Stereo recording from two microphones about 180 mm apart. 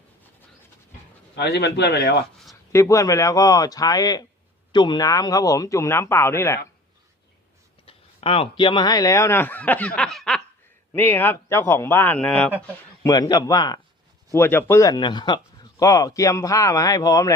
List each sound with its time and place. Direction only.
1.4 s speech: 65° left (ahead or behind)
2.7 s speech: 15° left (ahead or behind)
7.9 s speech: 30° left (ahead or behind); by 12.5 s 5° left (ahead or behind)
13.0 s speech: 20° left (ahead or behind)